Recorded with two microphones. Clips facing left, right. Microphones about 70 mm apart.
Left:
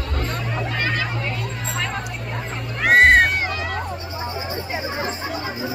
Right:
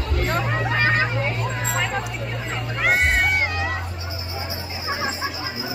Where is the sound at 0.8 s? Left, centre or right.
Right.